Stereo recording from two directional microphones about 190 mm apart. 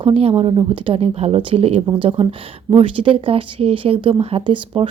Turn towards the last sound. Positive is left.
turn(degrees=-25)  # may be behind; listen again after turning